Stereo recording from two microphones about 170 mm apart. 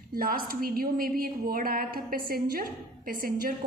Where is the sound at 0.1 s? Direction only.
60° right (ahead or behind).